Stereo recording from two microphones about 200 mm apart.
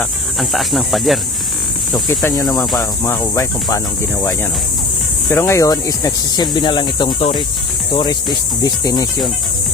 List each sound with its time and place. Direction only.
0.0 s speech: centre (ahead or behind)
2.0 s speech: 15° left (ahead or behind)
5.3 s speech: 15° left (ahead or behind)
8.6 s speech: 20° left (ahead or behind)